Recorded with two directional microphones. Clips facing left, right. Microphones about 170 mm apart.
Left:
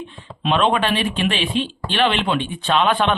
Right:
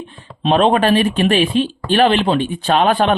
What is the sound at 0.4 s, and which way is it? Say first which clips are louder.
Speech: right 5 dB; 40° right (ahead or behind).